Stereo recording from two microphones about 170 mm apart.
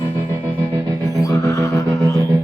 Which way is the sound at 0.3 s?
20° right (ahead or behind).